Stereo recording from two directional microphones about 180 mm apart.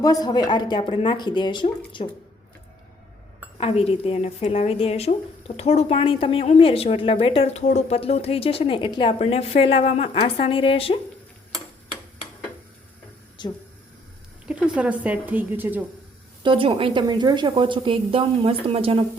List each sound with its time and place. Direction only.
0.0 s speech: 20° left (ahead or behind)
3.6 s a woman's voice: 35° left (ahead or behind)
13.4 s speech: 25° left (ahead or behind)
14.4 s speech: 5° right (ahead or behind)
16.4 s a woman's voice: 30° right (ahead or behind)